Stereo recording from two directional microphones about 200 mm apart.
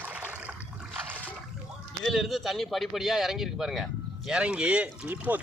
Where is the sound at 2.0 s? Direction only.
Centre (ahead or behind).